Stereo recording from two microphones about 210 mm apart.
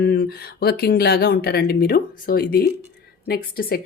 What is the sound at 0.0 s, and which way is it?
Speech, 45° left (ahead or behind).